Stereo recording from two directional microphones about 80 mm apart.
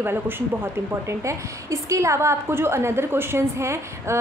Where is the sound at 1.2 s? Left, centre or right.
Right.